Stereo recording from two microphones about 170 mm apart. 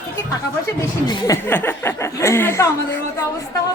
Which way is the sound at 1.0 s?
20° left (ahead or behind).